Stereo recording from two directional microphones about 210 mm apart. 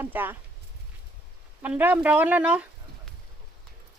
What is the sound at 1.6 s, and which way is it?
Speech, 10° right (ahead or behind).